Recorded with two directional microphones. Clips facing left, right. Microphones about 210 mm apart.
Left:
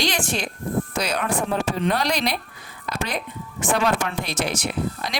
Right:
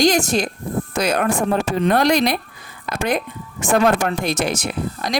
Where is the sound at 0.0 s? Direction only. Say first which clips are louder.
Right 8 dB; 45° right (ahead or behind).